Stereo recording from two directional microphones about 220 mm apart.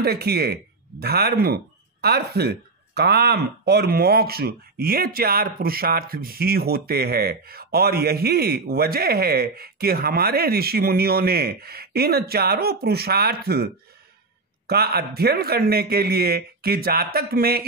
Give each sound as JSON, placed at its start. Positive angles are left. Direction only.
{"t": 0.0, "sound": "speech", "side_deg": -45}
{"t": 14.7, "sound": "speech", "side_deg": -45}